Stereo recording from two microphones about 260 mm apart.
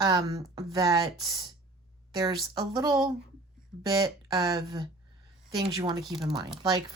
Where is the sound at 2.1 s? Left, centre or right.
Centre.